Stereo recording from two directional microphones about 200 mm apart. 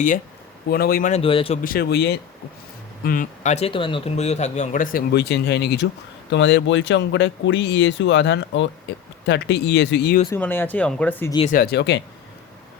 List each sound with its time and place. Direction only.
0.7 s speech: 50° left (ahead or behind)
1.2 s speech: 25° left (ahead or behind)
1.6 s speech: 50° left (ahead or behind)
3.0 s speech: 45° left (ahead or behind)
10.3 s speech: 10° left (ahead or behind)
11.4 s speech: 45° left (ahead or behind)